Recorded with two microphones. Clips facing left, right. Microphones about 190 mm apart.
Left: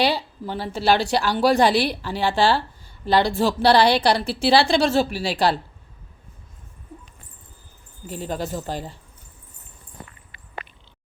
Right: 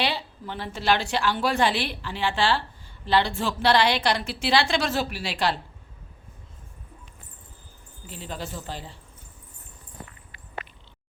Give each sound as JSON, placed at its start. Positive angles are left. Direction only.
{"t": 0.0, "sound": "a woman's voice", "side_deg": 40}
{"t": 8.0, "sound": "speech", "side_deg": 45}